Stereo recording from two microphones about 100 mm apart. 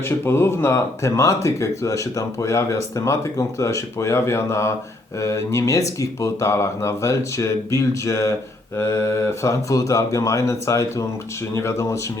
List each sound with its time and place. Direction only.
0.0 s speech: 25° left (ahead or behind)